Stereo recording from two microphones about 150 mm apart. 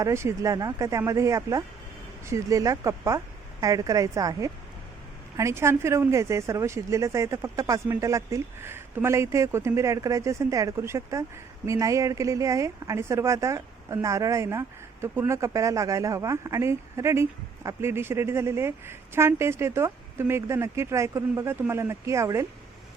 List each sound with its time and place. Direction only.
0.0 s speech: 20° right (ahead or behind)